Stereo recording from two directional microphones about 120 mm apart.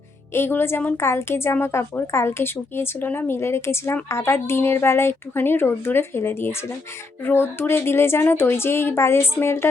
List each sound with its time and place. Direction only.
0.3 s a woman's voice: 20° left (ahead or behind)